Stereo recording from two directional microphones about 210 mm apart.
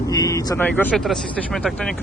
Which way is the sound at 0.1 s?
15° left (ahead or behind).